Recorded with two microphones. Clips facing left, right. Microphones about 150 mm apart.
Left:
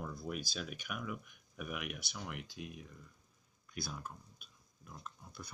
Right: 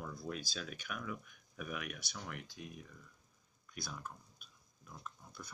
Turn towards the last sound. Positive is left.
turn(degrees=5)  # may be behind; listen again after turning